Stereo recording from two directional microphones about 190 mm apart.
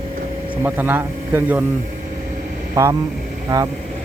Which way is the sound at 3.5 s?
15° right (ahead or behind).